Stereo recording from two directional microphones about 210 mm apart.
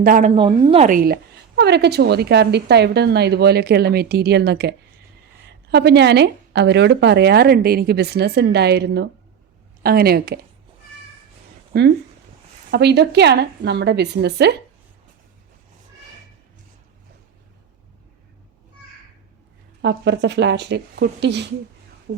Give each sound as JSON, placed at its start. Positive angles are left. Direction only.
{"t": 0.0, "sound": "a woman's voice", "side_deg": -40}
{"t": 0.9, "sound": "a woman's voice", "side_deg": -45}
{"t": 5.7, "sound": "a woman's voice", "side_deg": -50}
{"t": 12.7, "sound": "a woman's voice", "side_deg": -55}
{"t": 19.8, "sound": "speech", "side_deg": -55}